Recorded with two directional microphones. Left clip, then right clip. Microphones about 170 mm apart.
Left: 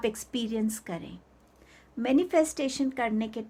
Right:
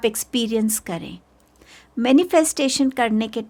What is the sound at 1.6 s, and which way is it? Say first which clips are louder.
A woman's voice: right 9 dB; 60° right (ahead or behind).